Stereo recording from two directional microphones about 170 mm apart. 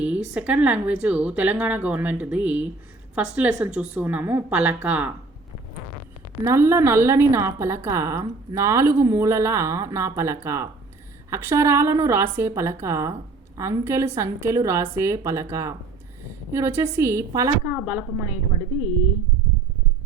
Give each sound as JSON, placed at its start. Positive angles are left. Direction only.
{"t": 0.0, "sound": "a woman's voice", "side_deg": -5}
{"t": 6.4, "sound": "a woman's voice", "side_deg": -15}